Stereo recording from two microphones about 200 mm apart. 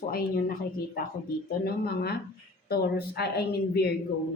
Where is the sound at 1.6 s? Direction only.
50° left (ahead or behind).